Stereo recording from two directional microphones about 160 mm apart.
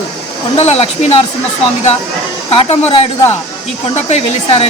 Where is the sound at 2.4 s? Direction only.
35° left (ahead or behind).